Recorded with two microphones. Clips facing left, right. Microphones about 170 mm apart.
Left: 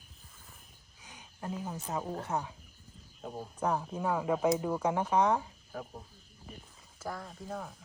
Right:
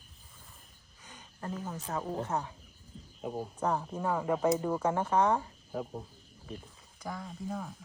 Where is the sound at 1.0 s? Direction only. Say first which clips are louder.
Even; 10° left (ahead or behind).